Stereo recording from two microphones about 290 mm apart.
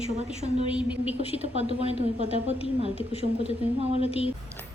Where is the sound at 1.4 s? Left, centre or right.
Centre.